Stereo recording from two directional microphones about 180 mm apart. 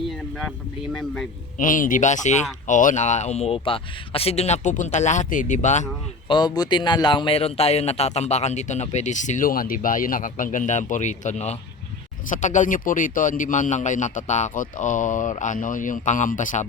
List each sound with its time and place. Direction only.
1.5 s a man's voice: 50° left (ahead or behind)
6.2 s a man's voice: 25° left (ahead or behind); by 16.6 s 45° left (ahead or behind)